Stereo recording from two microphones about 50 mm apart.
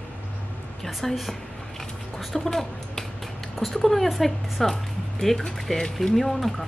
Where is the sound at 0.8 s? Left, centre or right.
Centre.